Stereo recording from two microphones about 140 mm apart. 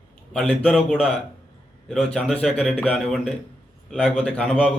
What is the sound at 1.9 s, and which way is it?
A man's voice, 5° left (ahead or behind).